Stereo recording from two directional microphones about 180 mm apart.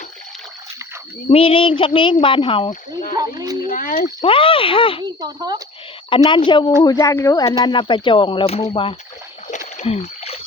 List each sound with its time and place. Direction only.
1.3 s speech: 30° left (ahead or behind)
3.2 s speech: 20° right (ahead or behind)
3.7 s speech: 50° left (ahead or behind)
4.2 s speech: 30° left (ahead or behind)
5.0 s speech: 20° right (ahead or behind)
6.1 s speech: 30° left (ahead or behind)
9.7 s rowboat: 35° left (ahead or behind)